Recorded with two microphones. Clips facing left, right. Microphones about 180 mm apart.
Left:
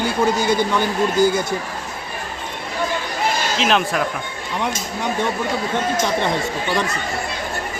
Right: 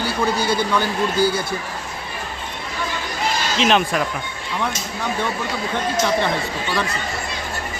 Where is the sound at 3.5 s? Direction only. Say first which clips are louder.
Right 3 dB; centre (ahead or behind).